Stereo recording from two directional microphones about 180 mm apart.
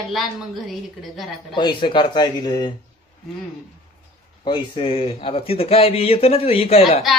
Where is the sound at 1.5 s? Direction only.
25° left (ahead or behind).